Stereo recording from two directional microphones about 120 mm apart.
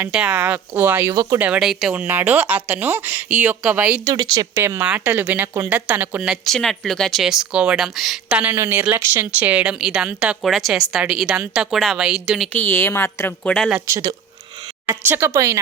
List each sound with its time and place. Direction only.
0.0 s speech: 10° right (ahead or behind)
1.1 s speech: 30° right (ahead or behind)
1.4 s speech: 10° right (ahead or behind)
4.0 s speech: 30° right (ahead or behind); by 6.3 s 15° right (ahead or behind)
6.3 s speech: centre (ahead or behind)
8.4 s speech: 15° right (ahead or behind)
10.4 s speech: centre (ahead or behind)
12.5 s a woman's voice: 20° left (ahead or behind)
13.8 s speech: 25° right (ahead or behind)